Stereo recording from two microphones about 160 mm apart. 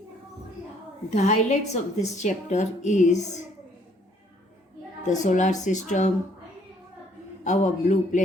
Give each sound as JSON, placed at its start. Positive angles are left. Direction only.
{"t": 1.1, "sound": "a woman's voice", "side_deg": 45}
{"t": 5.0, "sound": "a woman's voice", "side_deg": 50}
{"t": 7.4, "sound": "a woman's voice", "side_deg": 50}